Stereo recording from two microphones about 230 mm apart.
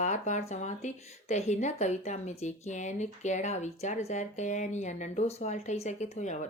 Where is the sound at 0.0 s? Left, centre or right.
Left.